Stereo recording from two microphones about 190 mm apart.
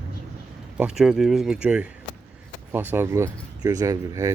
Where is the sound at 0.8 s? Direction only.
5° right (ahead or behind).